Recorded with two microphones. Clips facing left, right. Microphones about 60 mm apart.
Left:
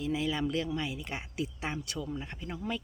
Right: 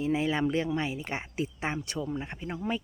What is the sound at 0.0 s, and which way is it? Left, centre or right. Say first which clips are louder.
A child's voice: right 4 dB; right.